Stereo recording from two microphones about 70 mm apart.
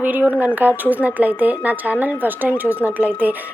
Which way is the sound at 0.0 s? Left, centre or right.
Right.